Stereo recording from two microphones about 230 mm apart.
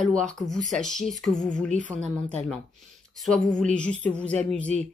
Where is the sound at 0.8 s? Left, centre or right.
Centre.